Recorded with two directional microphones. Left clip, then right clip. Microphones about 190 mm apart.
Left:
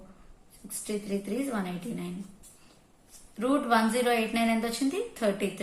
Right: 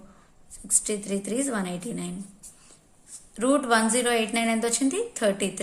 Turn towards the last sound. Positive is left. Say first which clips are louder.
# right 4 dB
turn(degrees=-40)  # may be behind; listen again after turning